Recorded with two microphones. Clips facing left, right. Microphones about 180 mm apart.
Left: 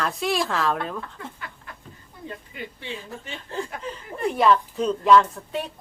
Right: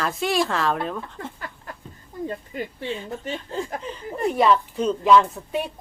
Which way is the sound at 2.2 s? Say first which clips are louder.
Right 5 dB; 40° right (ahead or behind).